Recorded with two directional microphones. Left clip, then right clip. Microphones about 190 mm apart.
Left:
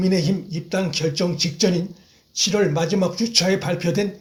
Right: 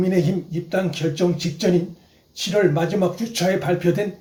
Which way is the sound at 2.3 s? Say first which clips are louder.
Right 1 dB; 40° left (ahead or behind).